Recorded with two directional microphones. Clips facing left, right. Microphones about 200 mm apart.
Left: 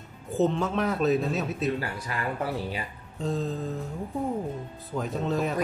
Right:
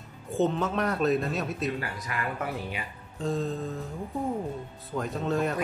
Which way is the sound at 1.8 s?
30° left (ahead or behind).